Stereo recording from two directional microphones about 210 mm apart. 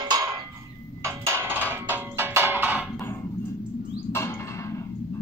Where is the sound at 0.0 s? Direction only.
20° right (ahead or behind).